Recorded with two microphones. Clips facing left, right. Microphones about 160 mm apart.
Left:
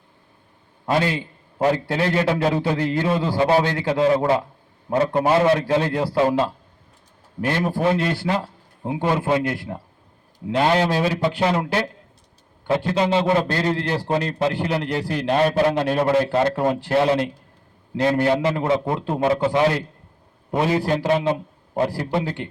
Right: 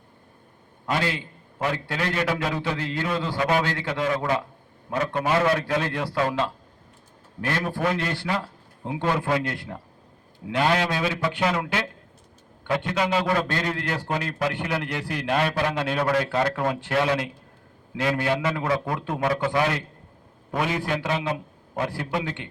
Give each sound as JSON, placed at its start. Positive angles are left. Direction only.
{"t": 0.9, "sound": "a man's voice", "side_deg": 25}
{"t": 7.8, "sound": "a man's voice", "side_deg": 25}